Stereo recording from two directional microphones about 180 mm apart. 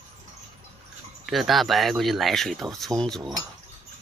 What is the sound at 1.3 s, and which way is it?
Speech, centre (ahead or behind).